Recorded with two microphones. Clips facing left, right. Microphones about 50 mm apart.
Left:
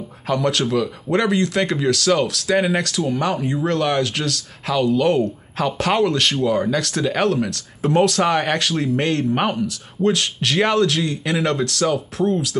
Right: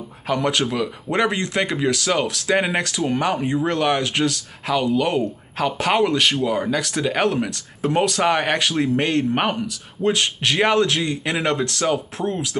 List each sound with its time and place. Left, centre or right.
0.3 s speech: centre
10.1 s speech: right